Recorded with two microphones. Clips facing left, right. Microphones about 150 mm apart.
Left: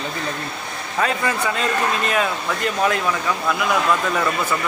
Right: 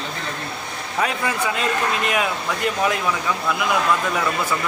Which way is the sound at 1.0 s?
10° right (ahead or behind).